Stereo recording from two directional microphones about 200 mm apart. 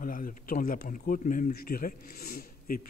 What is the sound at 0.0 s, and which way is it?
Speech, 45° left (ahead or behind).